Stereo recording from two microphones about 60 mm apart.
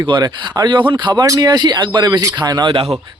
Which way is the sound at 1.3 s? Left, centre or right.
Right.